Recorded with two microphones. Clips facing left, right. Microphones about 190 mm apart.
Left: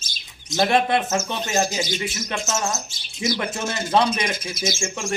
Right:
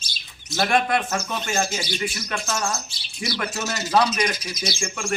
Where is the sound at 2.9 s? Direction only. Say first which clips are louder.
Left 5 dB; 45° left (ahead or behind).